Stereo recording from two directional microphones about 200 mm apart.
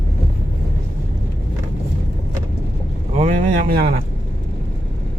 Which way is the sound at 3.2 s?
40° right (ahead or behind).